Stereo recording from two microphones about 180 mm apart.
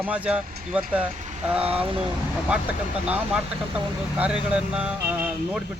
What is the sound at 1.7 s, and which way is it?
Speech, 30° right (ahead or behind).